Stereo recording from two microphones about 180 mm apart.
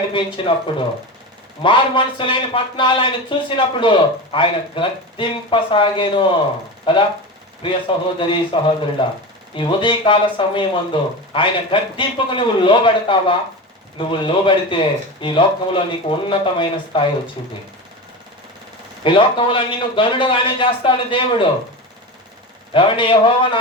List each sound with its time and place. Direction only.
0.5 s speech: 30° left (ahead or behind)
7.6 s speech: 25° left (ahead or behind)
19.0 s speech: 25° left (ahead or behind)
22.7 s speech: 30° left (ahead or behind)